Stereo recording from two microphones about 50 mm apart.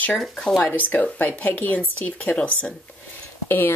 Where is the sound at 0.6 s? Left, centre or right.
Left.